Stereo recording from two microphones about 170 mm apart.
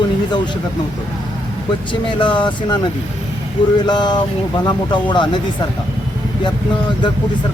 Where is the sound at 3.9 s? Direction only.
25° left (ahead or behind).